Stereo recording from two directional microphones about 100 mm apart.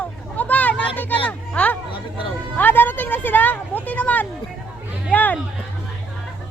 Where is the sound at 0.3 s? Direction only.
15° left (ahead or behind).